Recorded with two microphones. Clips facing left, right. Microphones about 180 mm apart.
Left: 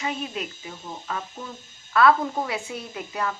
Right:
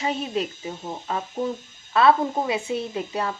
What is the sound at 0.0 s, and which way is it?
A woman's voice, 30° right (ahead or behind).